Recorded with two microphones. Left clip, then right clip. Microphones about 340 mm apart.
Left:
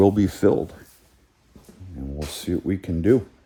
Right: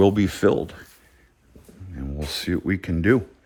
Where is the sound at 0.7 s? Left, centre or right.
Right.